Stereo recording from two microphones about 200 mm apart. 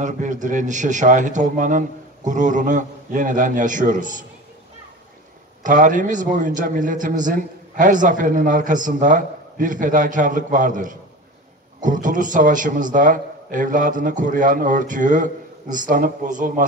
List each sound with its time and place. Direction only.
0.0 s a man's voice: 40° right (ahead or behind)
5.6 s a man's voice: 40° right (ahead or behind)